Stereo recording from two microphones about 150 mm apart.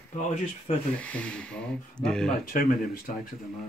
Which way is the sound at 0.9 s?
10° left (ahead or behind).